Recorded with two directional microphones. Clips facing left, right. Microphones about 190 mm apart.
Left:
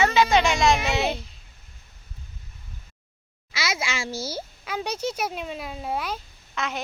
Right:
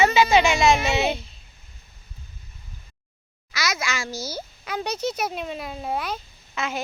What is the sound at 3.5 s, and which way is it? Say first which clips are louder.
Speech: right 1 dB; 25° left (ahead or behind).